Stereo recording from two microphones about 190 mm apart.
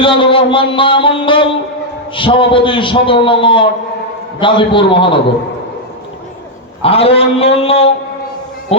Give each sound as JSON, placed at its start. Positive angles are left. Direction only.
{"t": 0.0, "sound": "a man's voice", "side_deg": 25}
{"t": 6.8, "sound": "a man's voice", "side_deg": 30}